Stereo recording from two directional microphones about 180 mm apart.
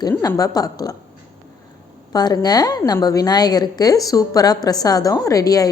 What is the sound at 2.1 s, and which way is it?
A woman's voice, 20° left (ahead or behind).